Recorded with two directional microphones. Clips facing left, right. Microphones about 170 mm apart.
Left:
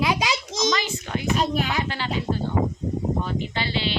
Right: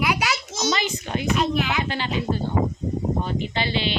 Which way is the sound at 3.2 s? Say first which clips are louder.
Right 2 dB; 20° right (ahead or behind).